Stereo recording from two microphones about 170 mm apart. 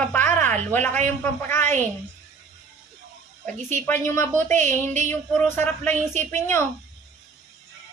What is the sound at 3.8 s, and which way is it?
A man's voice, 15° left (ahead or behind).